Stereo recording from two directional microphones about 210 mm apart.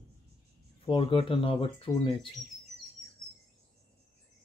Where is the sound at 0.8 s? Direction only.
25° left (ahead or behind).